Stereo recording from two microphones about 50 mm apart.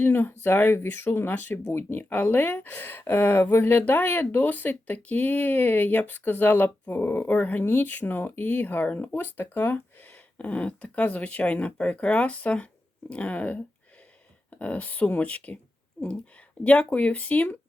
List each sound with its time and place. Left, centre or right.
0.0 s speech: left
6.9 s speech: left
7.3 s speech: left
7.6 s speech: left
16.6 s speech: left